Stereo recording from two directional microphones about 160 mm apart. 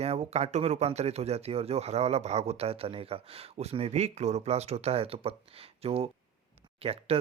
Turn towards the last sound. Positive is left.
turn(degrees=-35)  # may be behind; listen again after turning